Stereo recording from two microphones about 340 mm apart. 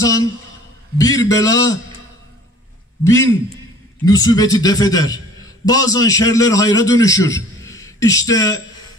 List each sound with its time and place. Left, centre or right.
0.0 s a sound: centre
0.9 s a man's voice: centre
3.0 s a man's voice: centre